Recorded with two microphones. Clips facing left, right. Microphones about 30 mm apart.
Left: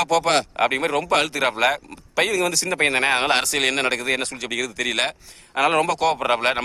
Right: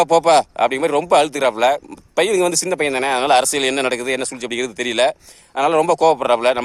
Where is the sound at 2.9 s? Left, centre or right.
Left.